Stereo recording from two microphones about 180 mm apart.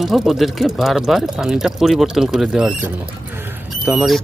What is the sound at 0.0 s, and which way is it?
Speech, centre (ahead or behind).